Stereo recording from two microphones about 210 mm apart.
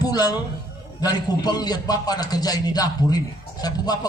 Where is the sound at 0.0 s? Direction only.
20° left (ahead or behind).